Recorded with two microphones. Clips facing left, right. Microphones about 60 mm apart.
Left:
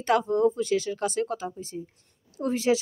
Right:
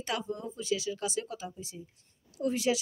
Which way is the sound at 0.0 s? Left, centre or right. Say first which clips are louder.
Left 11 dB; left.